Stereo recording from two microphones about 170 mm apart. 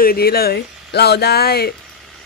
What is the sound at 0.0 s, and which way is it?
A woman's voice, 65° left (ahead or behind).